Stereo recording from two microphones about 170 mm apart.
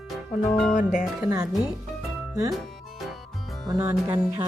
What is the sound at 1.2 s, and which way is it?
Speech, 15° right (ahead or behind).